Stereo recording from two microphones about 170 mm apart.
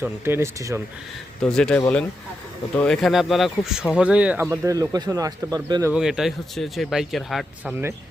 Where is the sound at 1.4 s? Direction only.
5° left (ahead or behind); by 5.9 s 20° right (ahead or behind).